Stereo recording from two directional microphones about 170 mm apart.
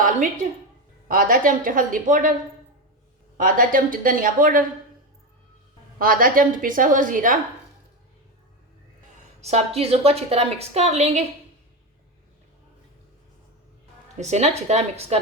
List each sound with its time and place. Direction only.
1.0 s speech: 55° right (ahead or behind)
3.3 s a woman's voice: 55° right (ahead or behind)
6.0 s a woman's voice: 55° right (ahead or behind)
9.4 s a woman's voice: 40° right (ahead or behind)
14.2 s a woman's voice: 40° right (ahead or behind)